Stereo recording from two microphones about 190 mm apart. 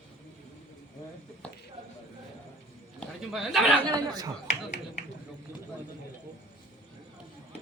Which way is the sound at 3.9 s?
20° right (ahead or behind).